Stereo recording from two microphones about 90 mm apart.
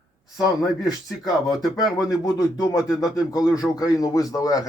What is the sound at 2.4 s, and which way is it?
Speech, 40° left (ahead or behind).